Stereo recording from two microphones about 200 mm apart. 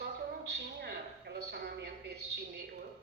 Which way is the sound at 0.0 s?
55° right (ahead or behind).